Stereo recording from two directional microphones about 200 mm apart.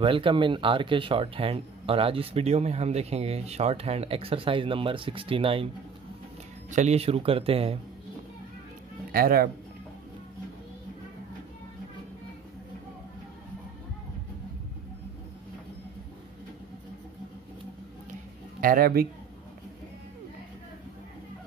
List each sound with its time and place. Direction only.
0.0 s speech: 25° right (ahead or behind)
6.7 s speech: 35° right (ahead or behind)
9.1 s speech: 50° right (ahead or behind)
18.6 s speech: 45° right (ahead or behind)